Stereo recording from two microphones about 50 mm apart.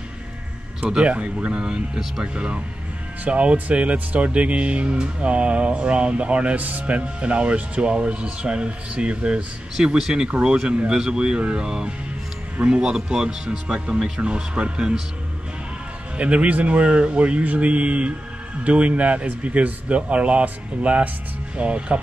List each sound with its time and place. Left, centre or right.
0.7 s speech: right
16.2 s speech: right